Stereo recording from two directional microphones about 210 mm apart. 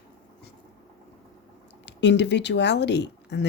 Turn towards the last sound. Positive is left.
turn(degrees=55)  # may be behind; listen again after turning